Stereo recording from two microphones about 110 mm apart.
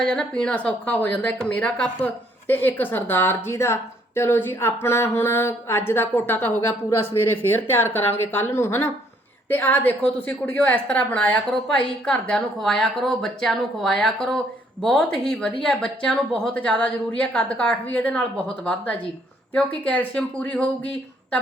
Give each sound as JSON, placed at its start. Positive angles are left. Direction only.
{"t": 0.0, "sound": "a woman's voice", "side_deg": 5}